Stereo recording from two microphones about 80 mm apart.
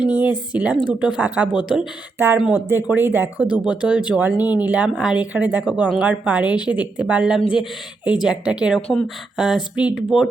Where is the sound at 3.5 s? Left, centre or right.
Centre.